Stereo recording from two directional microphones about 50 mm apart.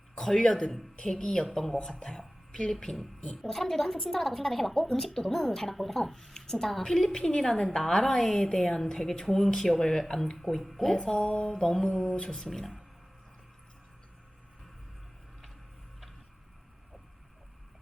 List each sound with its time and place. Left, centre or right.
0.2 s a woman's voice: centre
1.2 s speech: centre
1.5 s a woman's voice: centre
10.9 s a woman's voice: centre